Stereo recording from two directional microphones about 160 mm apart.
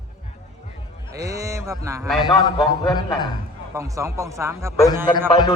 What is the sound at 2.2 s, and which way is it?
Speech, 25° left (ahead or behind).